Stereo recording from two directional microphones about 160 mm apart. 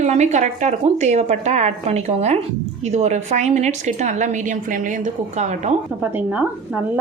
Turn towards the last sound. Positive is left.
turn(degrees=-5)  # may be behind; listen again after turning